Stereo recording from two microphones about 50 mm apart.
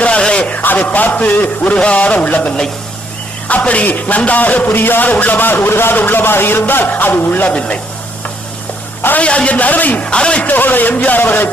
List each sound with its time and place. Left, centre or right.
0.0 s a sound: left
0.5 s a man's voice: left
3.5 s a man's voice: left
4.7 s a man's voice: left
5.6 s a man's voice: left
9.1 s a man's voice: left
10.5 s a man's voice: left